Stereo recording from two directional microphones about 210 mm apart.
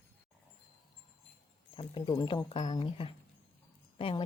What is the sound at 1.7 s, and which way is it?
Speech, 25° left (ahead or behind).